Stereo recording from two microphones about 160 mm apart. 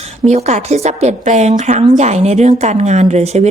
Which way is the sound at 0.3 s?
45° right (ahead or behind).